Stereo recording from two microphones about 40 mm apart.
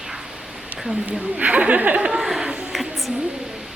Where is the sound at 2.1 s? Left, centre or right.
Centre.